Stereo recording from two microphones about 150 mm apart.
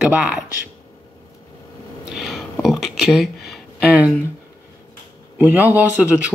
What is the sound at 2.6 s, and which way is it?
Speech, centre (ahead or behind).